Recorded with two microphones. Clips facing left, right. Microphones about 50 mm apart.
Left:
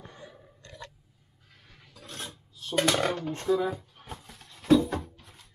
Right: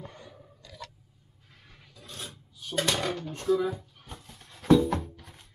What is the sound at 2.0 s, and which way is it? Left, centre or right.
Filing, left.